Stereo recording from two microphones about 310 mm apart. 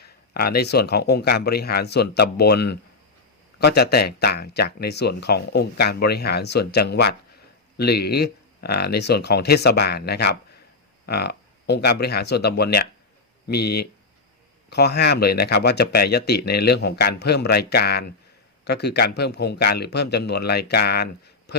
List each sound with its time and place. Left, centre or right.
0.0 s speech: left